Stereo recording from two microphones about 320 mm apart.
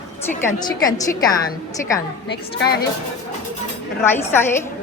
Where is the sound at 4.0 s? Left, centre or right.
Centre.